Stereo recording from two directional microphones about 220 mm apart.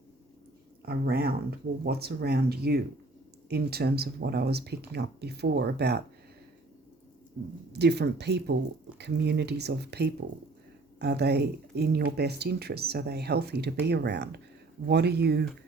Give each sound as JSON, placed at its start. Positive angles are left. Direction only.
{"t": 0.9, "sound": "speech", "side_deg": -45}
{"t": 7.7, "sound": "speech", "side_deg": -50}